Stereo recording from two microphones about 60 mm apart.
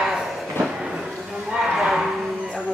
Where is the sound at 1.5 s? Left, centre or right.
Centre.